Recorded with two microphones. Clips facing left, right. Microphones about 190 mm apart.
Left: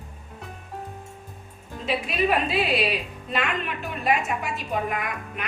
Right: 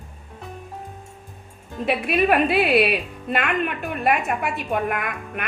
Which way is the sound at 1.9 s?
60° right (ahead or behind).